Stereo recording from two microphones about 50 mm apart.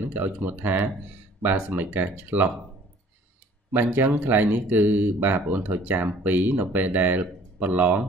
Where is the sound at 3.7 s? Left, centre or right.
Right.